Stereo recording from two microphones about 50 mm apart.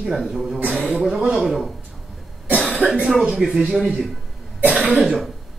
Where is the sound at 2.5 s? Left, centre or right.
Centre.